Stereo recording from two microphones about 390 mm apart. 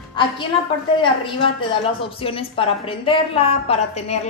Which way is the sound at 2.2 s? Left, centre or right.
Centre.